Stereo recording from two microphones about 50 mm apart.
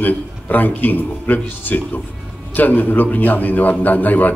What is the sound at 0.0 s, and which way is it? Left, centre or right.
A man's voice, left.